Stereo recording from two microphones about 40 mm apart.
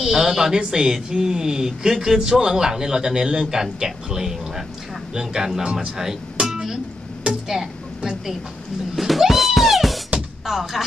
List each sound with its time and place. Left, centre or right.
0.0 s speech: centre
5.7 s speech: right
6.4 s music: centre
7.4 s a sound: centre
8.9 s cat: centre
9.2 s music: centre
10.4 s speech: centre